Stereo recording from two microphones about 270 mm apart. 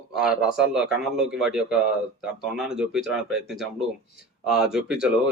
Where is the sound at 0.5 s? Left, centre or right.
Centre.